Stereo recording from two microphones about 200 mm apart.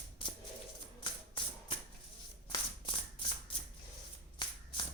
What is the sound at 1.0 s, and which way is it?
Music, 25° left (ahead or behind).